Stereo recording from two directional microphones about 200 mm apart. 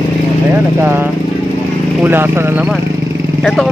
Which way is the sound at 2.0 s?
10° right (ahead or behind).